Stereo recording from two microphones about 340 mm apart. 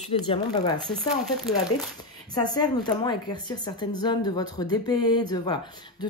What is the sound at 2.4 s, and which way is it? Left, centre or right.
Speech, centre.